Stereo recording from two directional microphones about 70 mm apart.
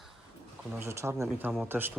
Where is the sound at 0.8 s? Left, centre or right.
Right.